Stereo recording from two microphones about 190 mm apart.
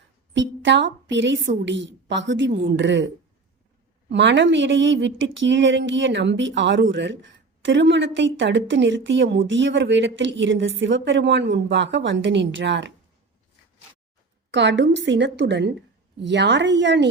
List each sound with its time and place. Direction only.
0.3 s a woman's voice: 70° right (ahead or behind)
4.1 s a woman's voice: 70° right (ahead or behind)
14.5 s a woman's voice: 70° right (ahead or behind)